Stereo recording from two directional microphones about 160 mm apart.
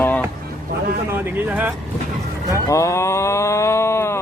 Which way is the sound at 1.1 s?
10° right (ahead or behind).